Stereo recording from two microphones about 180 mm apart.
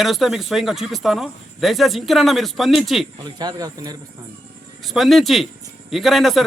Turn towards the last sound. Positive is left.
turn(degrees=0)  # may be behind; listen again after turning